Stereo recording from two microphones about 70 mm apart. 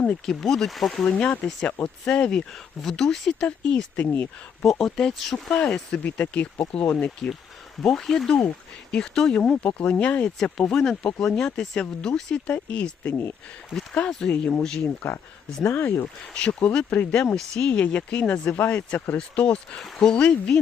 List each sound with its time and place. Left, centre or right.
0.3 s speech: centre
1.0 s speech: centre
4.0 s speech: left
4.6 s speech: centre
13.1 s speech: left
14.3 s speech: centre
15.0 s speech: left
16.3 s speech: centre
17.3 s speech: centre
17.7 s speech: centre